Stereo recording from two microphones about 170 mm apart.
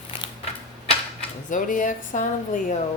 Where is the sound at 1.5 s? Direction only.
50° left (ahead or behind).